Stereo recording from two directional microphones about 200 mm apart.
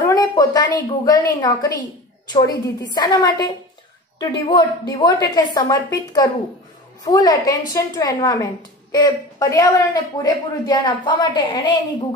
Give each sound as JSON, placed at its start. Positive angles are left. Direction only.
{"t": 0.0, "sound": "a woman's voice", "side_deg": 20}